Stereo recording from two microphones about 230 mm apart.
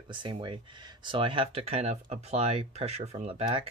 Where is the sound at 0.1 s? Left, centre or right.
Centre.